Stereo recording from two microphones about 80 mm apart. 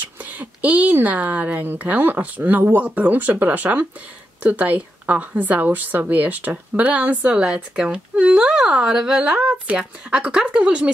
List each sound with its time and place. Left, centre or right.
0.2 s a woman's voice: centre